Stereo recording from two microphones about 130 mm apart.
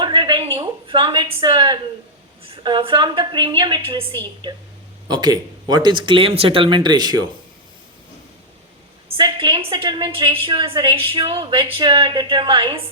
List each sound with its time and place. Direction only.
0.0 s a sound: 35° right (ahead or behind)
0.9 s a woman's voice: 40° right (ahead or behind)
9.0 s a woman's voice: 40° right (ahead or behind)